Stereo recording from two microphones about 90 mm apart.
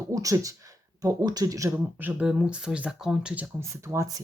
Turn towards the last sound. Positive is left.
turn(degrees=-35)  # may be behind; listen again after turning